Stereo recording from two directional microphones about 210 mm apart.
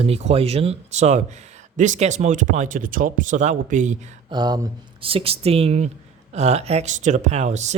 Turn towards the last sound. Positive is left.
turn(degrees=-35)  # may be behind; listen again after turning